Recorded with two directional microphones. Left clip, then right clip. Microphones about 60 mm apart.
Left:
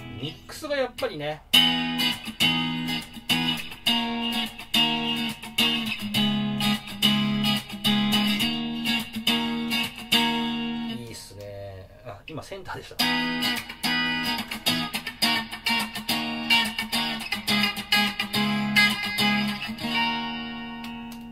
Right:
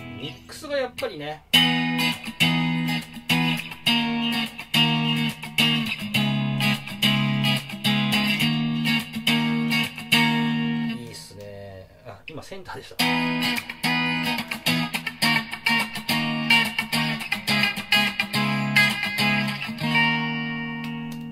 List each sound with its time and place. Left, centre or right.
0.7 s speech: centre
1.6 s music: right
12.9 s music: right